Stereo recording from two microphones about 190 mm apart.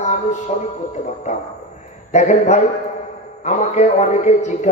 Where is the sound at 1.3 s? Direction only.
40° left (ahead or behind).